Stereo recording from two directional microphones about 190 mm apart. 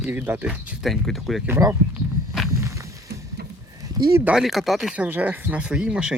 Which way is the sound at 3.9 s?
20° right (ahead or behind).